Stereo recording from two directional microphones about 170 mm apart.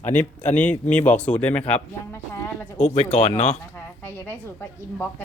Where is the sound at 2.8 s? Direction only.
40° left (ahead or behind).